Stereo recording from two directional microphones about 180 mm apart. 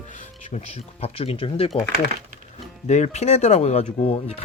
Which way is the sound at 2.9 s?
40° left (ahead or behind).